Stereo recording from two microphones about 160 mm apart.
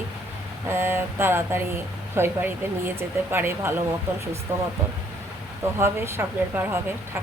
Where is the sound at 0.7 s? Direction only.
15° right (ahead or behind).